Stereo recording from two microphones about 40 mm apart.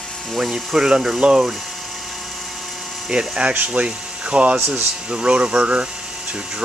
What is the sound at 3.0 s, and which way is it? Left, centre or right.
Speech, centre.